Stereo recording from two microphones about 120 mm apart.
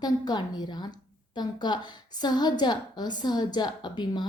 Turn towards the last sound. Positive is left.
turn(degrees=35)  # may be behind; listen again after turning